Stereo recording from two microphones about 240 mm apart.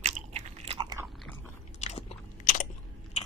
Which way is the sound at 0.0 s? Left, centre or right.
Right.